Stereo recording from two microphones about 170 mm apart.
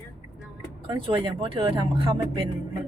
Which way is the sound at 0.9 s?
30° right (ahead or behind).